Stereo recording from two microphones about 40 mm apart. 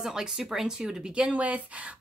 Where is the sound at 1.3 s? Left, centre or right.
Right.